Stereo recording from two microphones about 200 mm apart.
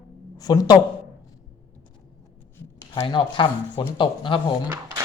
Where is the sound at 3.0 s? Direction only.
25° left (ahead or behind).